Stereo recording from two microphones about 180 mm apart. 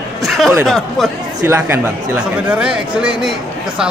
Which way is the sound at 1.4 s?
10° right (ahead or behind).